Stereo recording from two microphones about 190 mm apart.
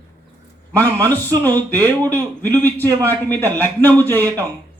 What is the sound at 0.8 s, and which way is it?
A man's voice, 10° left (ahead or behind).